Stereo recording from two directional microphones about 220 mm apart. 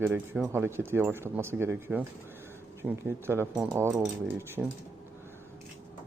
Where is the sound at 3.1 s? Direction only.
10° right (ahead or behind).